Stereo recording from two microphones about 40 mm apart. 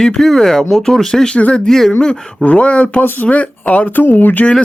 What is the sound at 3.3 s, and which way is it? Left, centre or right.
Speech, left.